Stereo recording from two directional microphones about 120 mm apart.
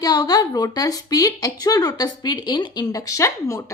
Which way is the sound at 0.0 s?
35° left (ahead or behind).